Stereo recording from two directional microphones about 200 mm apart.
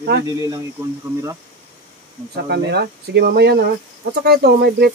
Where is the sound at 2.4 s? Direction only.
55° right (ahead or behind).